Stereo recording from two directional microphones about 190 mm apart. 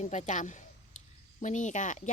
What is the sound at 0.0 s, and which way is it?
Speech, 40° left (ahead or behind).